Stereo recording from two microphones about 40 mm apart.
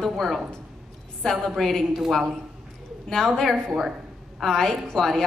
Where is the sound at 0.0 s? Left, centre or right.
Centre.